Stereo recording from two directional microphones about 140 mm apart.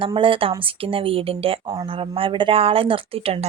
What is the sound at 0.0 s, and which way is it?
Speech, 40° right (ahead or behind).